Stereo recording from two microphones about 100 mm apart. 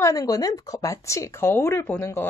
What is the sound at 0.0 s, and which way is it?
Speech, 35° left (ahead or behind).